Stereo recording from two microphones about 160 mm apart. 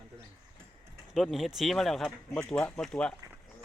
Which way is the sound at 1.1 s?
Centre (ahead or behind).